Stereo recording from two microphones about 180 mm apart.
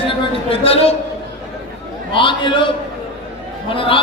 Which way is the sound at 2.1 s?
25° left (ahead or behind).